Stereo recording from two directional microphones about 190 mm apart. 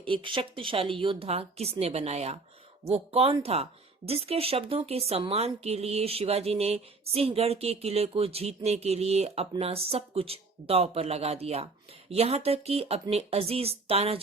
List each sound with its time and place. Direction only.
0.0 s speech: 25° right (ahead or behind)